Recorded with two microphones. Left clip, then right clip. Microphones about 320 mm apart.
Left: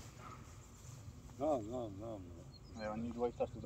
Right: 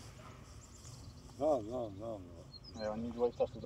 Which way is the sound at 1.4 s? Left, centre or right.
Right.